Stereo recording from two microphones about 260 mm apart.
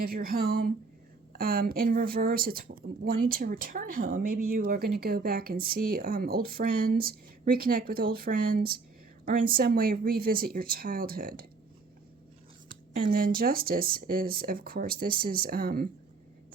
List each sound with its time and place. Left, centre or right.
0.0 s speech: right
12.6 s speech: right